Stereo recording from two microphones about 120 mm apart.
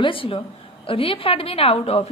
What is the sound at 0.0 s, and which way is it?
A woman's voice, 50° left (ahead or behind).